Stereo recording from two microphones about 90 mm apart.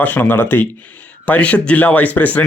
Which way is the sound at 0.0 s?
20° left (ahead or behind).